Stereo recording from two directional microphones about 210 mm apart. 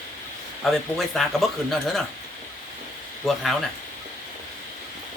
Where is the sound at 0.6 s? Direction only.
Centre (ahead or behind).